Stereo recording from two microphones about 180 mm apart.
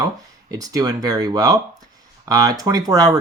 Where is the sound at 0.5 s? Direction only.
20° right (ahead or behind).